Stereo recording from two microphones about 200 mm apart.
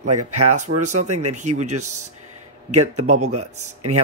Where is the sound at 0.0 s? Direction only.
35° right (ahead or behind).